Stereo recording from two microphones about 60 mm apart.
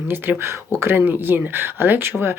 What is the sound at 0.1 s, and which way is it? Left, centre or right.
Speech, right.